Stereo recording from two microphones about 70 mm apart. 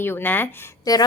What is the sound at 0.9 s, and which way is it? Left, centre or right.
Speech, left.